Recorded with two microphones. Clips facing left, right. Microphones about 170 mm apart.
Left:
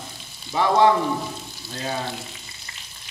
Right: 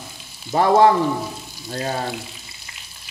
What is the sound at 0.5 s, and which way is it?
Speech, 45° right (ahead or behind).